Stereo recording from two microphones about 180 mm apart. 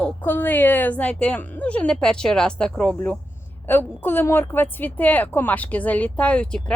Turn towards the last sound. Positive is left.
turn(degrees=5)  # may be behind; listen again after turning